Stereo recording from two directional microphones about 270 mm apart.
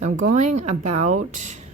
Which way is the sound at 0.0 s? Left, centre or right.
Right.